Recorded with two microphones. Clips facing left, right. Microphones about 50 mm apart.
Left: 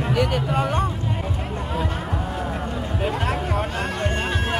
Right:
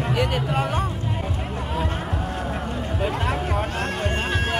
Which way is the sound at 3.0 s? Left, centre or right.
Centre.